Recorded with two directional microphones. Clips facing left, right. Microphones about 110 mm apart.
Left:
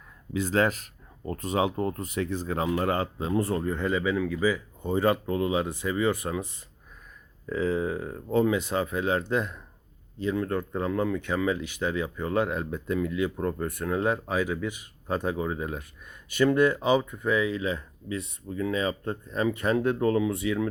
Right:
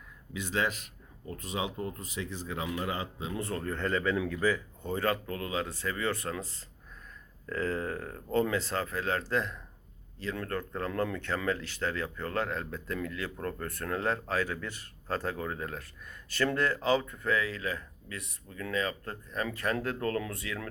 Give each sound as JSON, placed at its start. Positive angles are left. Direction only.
{"t": 0.3, "sound": "speech", "side_deg": 45}
{"t": 3.6, "sound": "speech", "side_deg": 15}